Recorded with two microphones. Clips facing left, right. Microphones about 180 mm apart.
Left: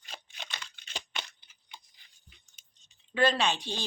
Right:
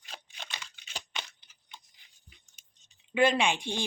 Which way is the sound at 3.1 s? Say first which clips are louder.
Right 2 dB; 15° right (ahead or behind).